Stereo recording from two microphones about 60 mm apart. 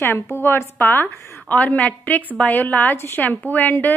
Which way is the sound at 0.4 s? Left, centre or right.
Left.